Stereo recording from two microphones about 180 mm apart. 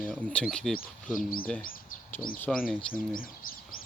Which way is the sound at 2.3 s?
10° left (ahead or behind).